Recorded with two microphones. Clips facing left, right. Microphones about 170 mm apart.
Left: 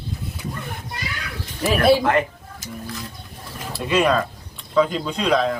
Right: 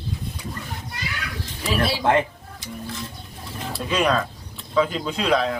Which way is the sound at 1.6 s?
50° left (ahead or behind).